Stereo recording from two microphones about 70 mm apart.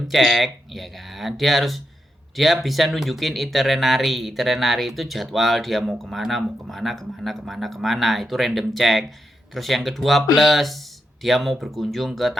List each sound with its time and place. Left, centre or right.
0.1 s speech: centre